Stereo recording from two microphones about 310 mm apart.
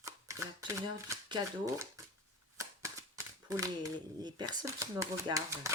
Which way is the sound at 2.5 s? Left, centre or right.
Centre.